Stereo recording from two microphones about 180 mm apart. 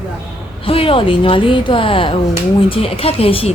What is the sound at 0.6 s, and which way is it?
A woman's voice, 30° left (ahead or behind).